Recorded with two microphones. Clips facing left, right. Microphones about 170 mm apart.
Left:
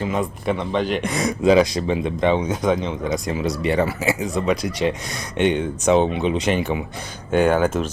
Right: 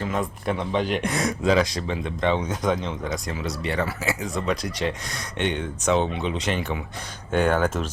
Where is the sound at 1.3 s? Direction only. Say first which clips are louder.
Left 7 dB; 15° left (ahead or behind).